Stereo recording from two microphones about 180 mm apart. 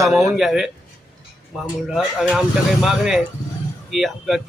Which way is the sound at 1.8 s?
5° right (ahead or behind).